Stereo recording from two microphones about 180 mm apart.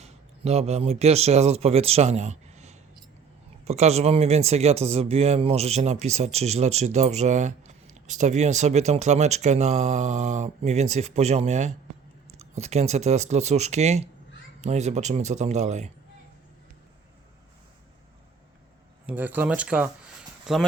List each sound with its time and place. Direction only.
0.0 s speech: 35° right (ahead or behind)
19.0 s speech: 10° right (ahead or behind)